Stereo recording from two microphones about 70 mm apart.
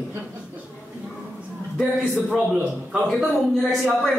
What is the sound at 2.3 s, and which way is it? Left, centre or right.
Speech, centre.